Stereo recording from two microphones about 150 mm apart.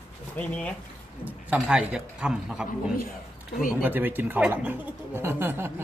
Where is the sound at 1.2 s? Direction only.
10° right (ahead or behind).